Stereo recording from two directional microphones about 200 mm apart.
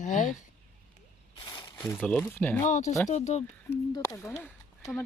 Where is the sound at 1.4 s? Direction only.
20° left (ahead or behind).